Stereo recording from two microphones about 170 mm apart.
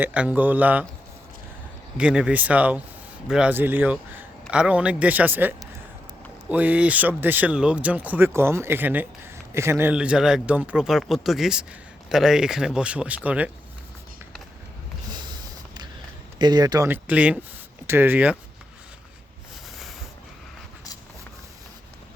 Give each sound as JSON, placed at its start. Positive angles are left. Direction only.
{"t": 0.0, "sound": "speech", "side_deg": -10}
{"t": 2.0, "sound": "speech", "side_deg": -5}
{"t": 16.4, "sound": "speech", "side_deg": -25}